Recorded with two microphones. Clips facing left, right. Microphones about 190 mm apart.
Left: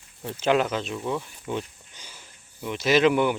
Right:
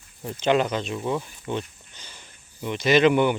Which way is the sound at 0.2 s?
Centre (ahead or behind).